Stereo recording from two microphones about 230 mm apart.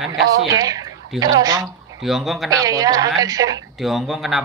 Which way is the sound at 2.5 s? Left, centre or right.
Centre.